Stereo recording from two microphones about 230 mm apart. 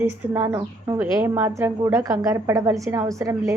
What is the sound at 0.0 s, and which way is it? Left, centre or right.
A woman's voice, centre.